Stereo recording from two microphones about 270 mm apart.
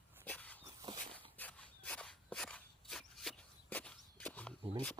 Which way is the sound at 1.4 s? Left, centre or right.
Centre.